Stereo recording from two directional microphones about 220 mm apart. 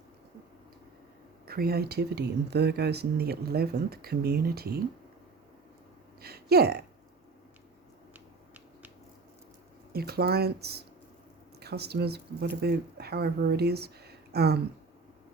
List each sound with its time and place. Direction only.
1.5 s speech: 45° right (ahead or behind)
6.2 s speech: 45° right (ahead or behind)
8.1 s finger snapping: 10° right (ahead or behind)
9.9 s speech: 45° right (ahead or behind)